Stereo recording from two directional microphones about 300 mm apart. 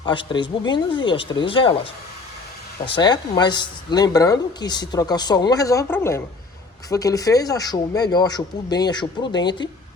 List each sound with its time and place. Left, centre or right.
0.0 s speech: centre
2.9 s speech: centre